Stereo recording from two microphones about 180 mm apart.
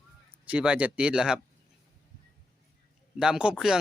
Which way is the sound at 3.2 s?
5° right (ahead or behind).